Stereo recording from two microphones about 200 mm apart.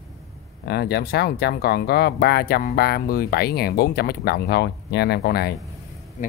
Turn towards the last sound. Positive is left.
turn(degrees=55)  # may be behind; listen again after turning